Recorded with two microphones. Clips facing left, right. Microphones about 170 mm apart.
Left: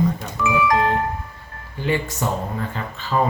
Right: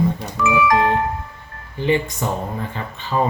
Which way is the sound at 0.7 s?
70° right (ahead or behind).